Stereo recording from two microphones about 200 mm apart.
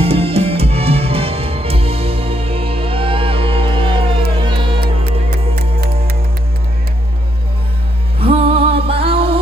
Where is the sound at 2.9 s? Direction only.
25° right (ahead or behind).